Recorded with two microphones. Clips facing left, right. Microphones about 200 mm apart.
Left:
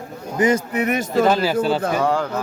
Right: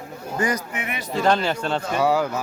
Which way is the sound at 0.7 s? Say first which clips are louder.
Left 9 dB; 40° left (ahead or behind).